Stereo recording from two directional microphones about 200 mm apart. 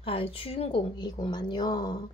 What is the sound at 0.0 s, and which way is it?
Speech, 30° left (ahead or behind).